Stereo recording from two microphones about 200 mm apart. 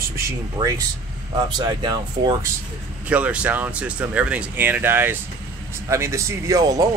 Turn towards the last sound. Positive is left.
turn(degrees=-20)  # may be behind; listen again after turning